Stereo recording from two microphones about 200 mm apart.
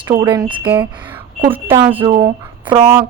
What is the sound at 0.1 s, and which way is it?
A woman's voice, 20° right (ahead or behind).